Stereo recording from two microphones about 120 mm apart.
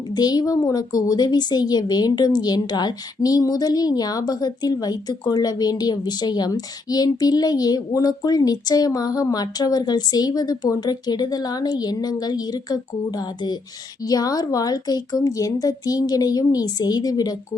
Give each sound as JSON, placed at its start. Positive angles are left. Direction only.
{"t": 0.1, "sound": "a woman's voice", "side_deg": 35}